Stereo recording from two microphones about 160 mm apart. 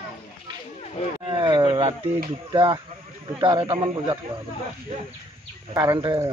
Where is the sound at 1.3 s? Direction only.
30° right (ahead or behind).